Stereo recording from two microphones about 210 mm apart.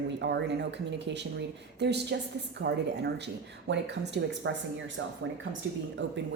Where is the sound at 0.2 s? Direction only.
55° right (ahead or behind).